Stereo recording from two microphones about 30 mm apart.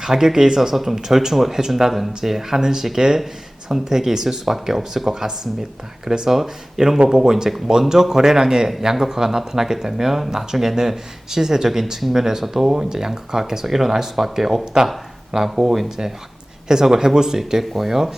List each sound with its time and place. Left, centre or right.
0.0 s speech: centre
14.6 s speech: right
17.6 s speech: centre